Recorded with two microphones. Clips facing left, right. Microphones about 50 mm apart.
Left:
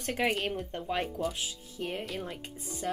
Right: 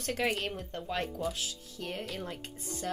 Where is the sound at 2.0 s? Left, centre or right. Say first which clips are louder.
Left 2 dB; centre.